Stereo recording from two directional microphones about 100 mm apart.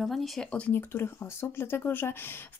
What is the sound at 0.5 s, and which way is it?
Speech, 15° left (ahead or behind).